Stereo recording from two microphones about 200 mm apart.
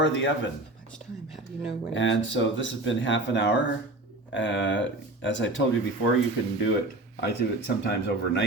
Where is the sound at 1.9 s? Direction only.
65° left (ahead or behind).